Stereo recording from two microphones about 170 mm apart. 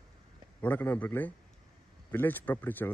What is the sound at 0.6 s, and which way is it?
Speech, 10° left (ahead or behind).